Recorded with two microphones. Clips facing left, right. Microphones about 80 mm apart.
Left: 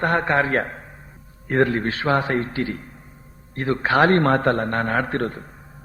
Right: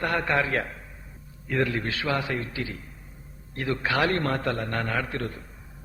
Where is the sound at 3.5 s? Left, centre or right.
Left.